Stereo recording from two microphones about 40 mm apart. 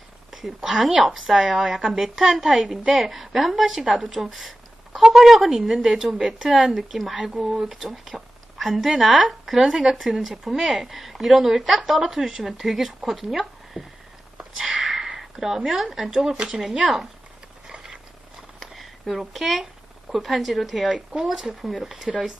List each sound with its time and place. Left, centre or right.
0.3 s speech: centre
2.6 s speech: centre
3.0 s speech: centre
7.2 s speech: centre
13.7 s a sound: centre
14.5 s speech: centre
17.7 s a sound: centre
18.7 s a sound: centre
19.3 s speech: centre
20.9 s speech: right
21.2 s speech: centre